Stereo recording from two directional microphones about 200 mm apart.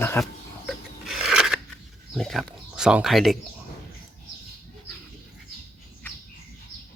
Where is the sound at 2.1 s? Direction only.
Centre (ahead or behind).